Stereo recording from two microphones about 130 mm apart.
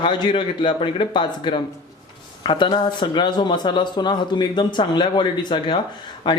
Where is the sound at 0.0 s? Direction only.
40° left (ahead or behind).